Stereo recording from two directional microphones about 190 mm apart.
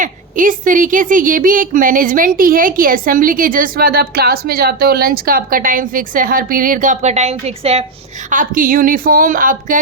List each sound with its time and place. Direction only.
0.0 s a woman's voice: 45° right (ahead or behind)
8.3 s a woman's voice: 45° right (ahead or behind)